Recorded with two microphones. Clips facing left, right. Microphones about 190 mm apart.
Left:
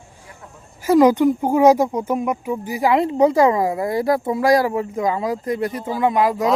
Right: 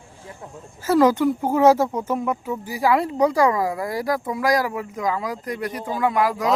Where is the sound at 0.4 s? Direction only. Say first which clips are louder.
Right 4 dB; 25° right (ahead or behind).